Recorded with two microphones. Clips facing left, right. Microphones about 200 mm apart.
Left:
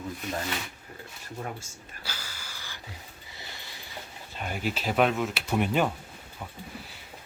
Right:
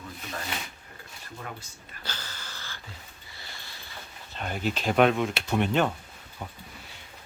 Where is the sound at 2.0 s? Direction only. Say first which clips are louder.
Right 2 dB; 10° left (ahead or behind).